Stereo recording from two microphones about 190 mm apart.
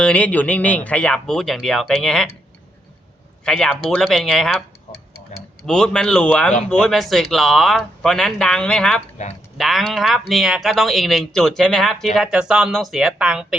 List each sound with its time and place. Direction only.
0.0 s speech: 5° left (ahead or behind)
3.4 s speech: 5° left (ahead or behind)
5.3 s tick-tock: 40° left (ahead or behind)
5.6 s speech: 5° left (ahead or behind)